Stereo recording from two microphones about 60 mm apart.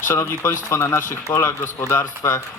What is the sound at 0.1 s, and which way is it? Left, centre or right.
A man's voice, left.